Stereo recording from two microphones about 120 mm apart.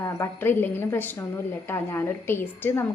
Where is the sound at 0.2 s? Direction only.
20° left (ahead or behind).